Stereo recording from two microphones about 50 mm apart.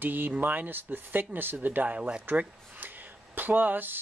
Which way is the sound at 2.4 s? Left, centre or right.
Right.